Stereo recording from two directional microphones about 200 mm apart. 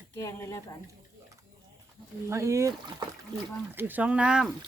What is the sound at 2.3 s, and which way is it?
Speech, 15° right (ahead or behind).